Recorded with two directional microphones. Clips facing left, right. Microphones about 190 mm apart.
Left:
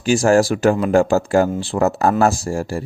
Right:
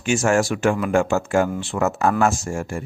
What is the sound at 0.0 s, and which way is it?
Speech, 35° left (ahead or behind).